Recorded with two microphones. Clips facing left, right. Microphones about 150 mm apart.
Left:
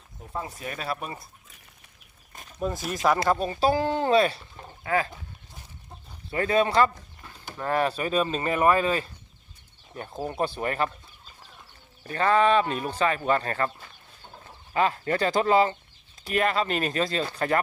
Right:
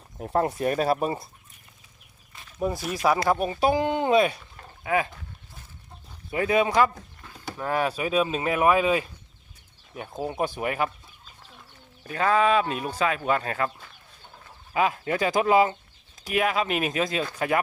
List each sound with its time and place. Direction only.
0.2 s speech: 65° right (ahead or behind); by 1.3 s 30° right (ahead or behind)
2.6 s speech: 10° right (ahead or behind)
3.2 s speech: 15° right (ahead or behind)
6.3 s speech: 10° right (ahead or behind)
12.0 s speech: 5° right (ahead or behind)